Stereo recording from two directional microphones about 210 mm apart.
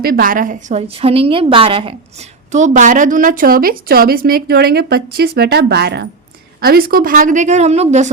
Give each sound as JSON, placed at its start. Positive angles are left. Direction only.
{"t": 0.0, "sound": "a woman's voice", "side_deg": -40}